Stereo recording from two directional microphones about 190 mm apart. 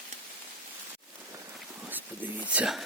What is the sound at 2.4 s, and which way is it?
Speech, 5° right (ahead or behind).